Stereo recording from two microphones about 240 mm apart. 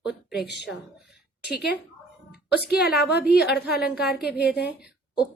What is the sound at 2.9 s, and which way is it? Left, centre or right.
A woman's voice, left.